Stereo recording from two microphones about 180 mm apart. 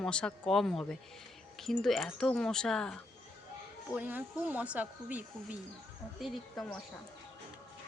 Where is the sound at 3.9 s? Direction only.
10° right (ahead or behind).